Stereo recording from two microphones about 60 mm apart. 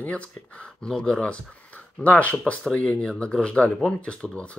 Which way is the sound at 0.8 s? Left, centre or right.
Centre.